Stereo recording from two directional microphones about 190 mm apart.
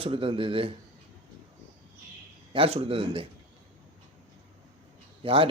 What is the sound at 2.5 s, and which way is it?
Speech, 30° right (ahead or behind).